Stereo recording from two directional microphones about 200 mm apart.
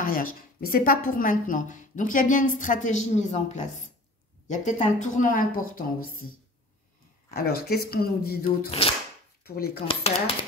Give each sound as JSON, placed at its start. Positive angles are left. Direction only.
{"t": 0.0, "sound": "a sound", "side_deg": 45}
{"t": 0.6, "sound": "a woman's voice", "side_deg": 45}
{"t": 7.3, "sound": "speech", "side_deg": 50}
{"t": 8.6, "sound": "speech", "side_deg": 30}
{"t": 9.4, "sound": "speech", "side_deg": 50}
{"t": 9.8, "sound": "speech", "side_deg": 30}